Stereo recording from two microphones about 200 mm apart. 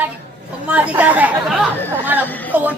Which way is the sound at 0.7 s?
5° right (ahead or behind).